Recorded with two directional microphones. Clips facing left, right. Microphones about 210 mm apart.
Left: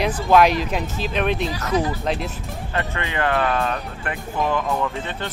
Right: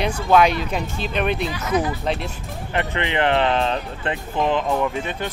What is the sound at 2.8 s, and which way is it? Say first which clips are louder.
Speech: right 3 dB; 20° right (ahead or behind).